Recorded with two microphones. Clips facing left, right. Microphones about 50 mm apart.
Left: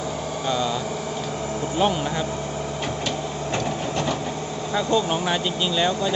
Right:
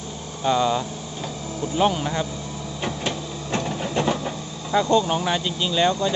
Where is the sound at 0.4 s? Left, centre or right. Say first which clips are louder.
Right 5 dB; centre.